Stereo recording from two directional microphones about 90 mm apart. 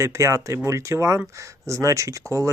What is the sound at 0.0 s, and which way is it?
Speech, 35° right (ahead or behind).